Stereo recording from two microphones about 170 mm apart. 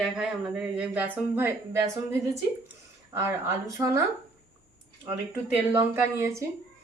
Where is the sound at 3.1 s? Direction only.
15° right (ahead or behind).